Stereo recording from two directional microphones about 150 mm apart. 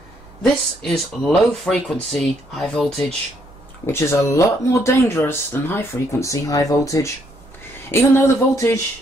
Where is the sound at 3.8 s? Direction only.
20° left (ahead or behind).